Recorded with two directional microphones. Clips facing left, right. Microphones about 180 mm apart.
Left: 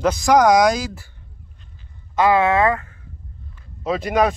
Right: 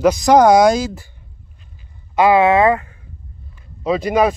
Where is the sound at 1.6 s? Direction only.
10° right (ahead or behind).